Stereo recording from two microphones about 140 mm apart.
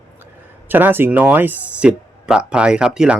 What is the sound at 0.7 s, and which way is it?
Speech, 15° right (ahead or behind).